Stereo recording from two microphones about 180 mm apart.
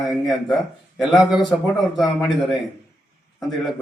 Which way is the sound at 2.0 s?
Centre (ahead or behind).